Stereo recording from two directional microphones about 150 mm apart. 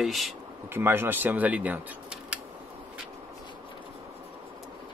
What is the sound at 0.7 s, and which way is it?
Speech, 15° right (ahead or behind).